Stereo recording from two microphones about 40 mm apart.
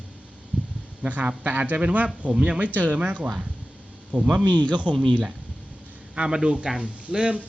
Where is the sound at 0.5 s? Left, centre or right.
Right.